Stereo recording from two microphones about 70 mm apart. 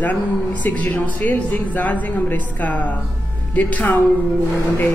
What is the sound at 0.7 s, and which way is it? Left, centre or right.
Speech, left.